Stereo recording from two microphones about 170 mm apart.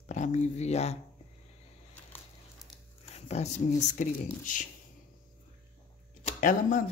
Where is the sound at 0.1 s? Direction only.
45° left (ahead or behind).